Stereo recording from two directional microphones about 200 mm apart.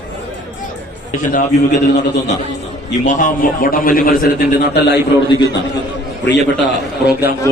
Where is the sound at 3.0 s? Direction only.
40° left (ahead or behind); by 4.9 s 55° left (ahead or behind).